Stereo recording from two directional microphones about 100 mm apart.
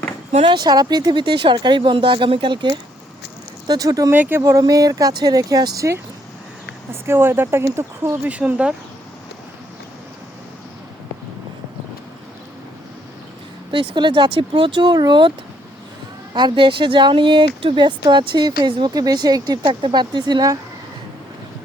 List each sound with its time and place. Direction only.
0.3 s speech: 90° right
0.5 s speech: 45° right (ahead or behind)
3.7 s speech: 35° right (ahead or behind)
4.1 s speech: 20° right (ahead or behind)
8.2 s speech: 15° right (ahead or behind)
13.7 s speech: 55° right (ahead or behind)
16.3 s speech: 50° right (ahead or behind)